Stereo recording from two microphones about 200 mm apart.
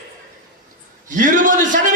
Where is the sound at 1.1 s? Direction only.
40° right (ahead or behind).